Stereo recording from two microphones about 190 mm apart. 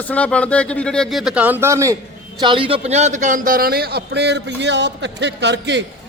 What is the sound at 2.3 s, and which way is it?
A man's voice, 25° right (ahead or behind).